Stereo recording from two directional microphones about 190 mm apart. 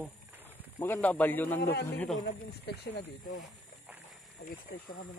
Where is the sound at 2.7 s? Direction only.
60° left (ahead or behind).